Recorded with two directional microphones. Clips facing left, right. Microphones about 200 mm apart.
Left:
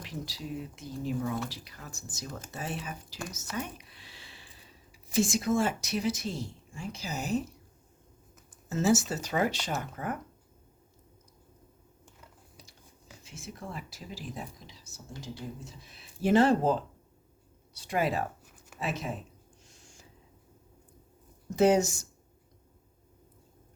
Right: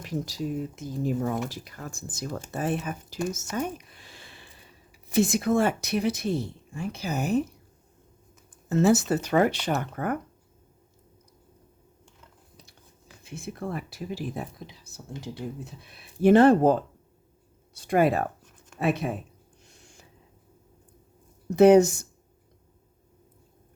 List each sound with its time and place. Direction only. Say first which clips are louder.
0.0 s speech: right 9 dB; 45° right (ahead or behind)
3.5 s a sound: right 7 dB; 45° right (ahead or behind)
5.0 s speech: right 4 dB; 60° right (ahead or behind)
8.7 s speech: right 5 dB; 60° right (ahead or behind)
13.2 s speech: right 8 dB; 55° right (ahead or behind)
19.6 s a sound: right 5 dB; 60° right (ahead or behind)
21.5 s speech: right 8 dB; 60° right (ahead or behind)